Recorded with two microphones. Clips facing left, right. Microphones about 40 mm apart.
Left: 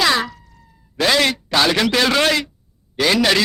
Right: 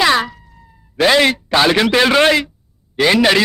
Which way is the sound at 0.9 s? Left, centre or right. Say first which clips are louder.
Right 4 dB; centre.